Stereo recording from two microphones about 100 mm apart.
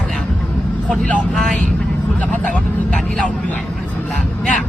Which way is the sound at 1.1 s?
15° left (ahead or behind).